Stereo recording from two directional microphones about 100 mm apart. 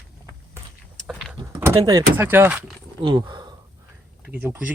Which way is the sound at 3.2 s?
50° right (ahead or behind).